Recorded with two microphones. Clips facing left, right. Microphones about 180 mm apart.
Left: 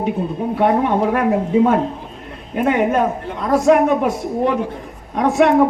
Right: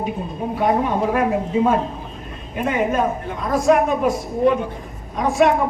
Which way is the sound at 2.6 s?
65° left (ahead or behind).